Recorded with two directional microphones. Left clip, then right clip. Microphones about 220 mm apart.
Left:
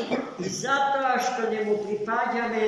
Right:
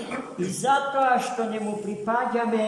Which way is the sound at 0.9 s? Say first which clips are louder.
Right 2 dB; 15° right (ahead or behind).